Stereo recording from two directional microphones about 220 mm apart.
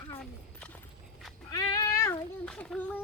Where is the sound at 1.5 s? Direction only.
15° left (ahead or behind).